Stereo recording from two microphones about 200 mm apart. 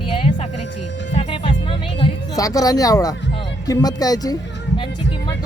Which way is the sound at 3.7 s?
20° left (ahead or behind).